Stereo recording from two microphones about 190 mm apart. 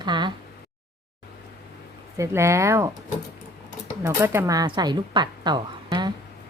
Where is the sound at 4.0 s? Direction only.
15° right (ahead or behind).